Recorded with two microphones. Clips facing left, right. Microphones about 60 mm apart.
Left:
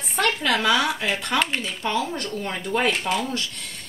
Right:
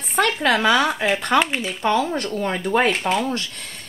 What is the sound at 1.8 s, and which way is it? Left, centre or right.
Speech, right.